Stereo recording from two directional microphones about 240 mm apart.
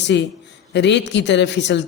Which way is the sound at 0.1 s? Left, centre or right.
Left.